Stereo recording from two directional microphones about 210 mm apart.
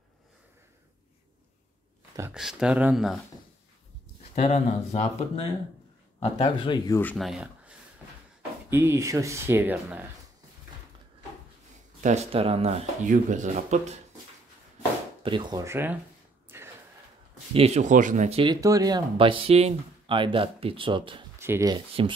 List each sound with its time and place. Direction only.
2.3 s speech: 5° right (ahead or behind)
4.2 s a man's voice: 30° left (ahead or behind)
6.4 s speech: 20° left (ahead or behind)
7.0 s speech: 5° left (ahead or behind)
12.0 s speech: 30° right (ahead or behind)
15.2 s speech: 20° right (ahead or behind)
16.5 s gasp: 10° right (ahead or behind)
17.6 s speech: 30° right (ahead or behind)
21.4 s speech: 15° right (ahead or behind)
22.0 s speech: 25° right (ahead or behind)